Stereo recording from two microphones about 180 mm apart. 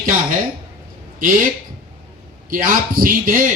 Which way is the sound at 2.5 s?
50° right (ahead or behind).